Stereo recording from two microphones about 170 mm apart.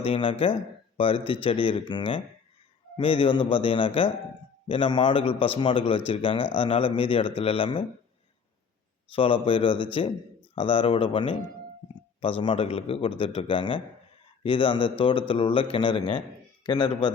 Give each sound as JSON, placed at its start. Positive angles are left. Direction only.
{"t": 0.0, "sound": "speech", "side_deg": 30}
{"t": 9.1, "sound": "speech", "side_deg": 30}